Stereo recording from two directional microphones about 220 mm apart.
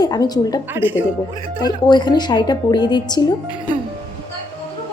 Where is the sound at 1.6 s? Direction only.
20° left (ahead or behind).